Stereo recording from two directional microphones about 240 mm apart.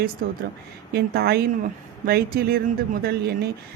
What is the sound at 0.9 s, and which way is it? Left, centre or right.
Speech, right.